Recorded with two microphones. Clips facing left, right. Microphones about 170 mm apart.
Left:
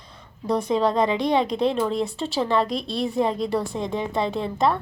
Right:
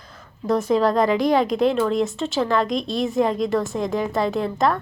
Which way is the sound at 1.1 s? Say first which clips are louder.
Right 3 dB; 25° left (ahead or behind).